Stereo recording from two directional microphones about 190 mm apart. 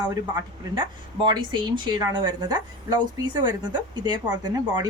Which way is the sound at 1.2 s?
25° right (ahead or behind).